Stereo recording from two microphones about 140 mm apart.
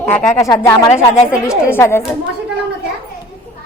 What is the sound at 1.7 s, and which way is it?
Speech, 15° left (ahead or behind).